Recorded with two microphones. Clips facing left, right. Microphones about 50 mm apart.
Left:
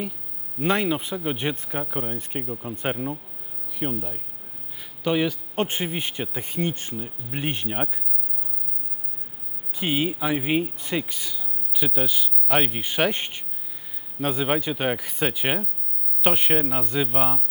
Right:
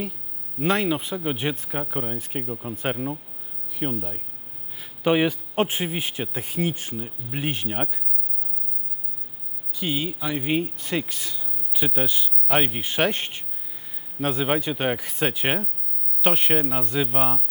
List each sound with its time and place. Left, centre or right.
0.6 s speech: centre
5.0 s a man's voice: right
5.5 s speech: centre
9.7 s speech: left; by 17.4 s centre